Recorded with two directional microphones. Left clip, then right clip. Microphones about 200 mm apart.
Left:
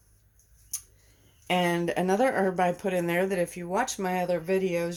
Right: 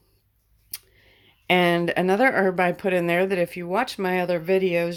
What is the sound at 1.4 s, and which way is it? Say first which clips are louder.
Speech: right 6 dB; 35° right (ahead or behind).